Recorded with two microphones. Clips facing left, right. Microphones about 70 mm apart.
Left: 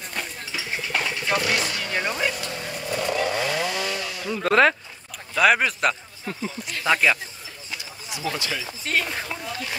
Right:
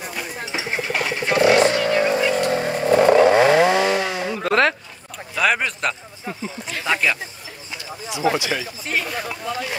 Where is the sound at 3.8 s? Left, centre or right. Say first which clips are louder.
Right 9 dB; right.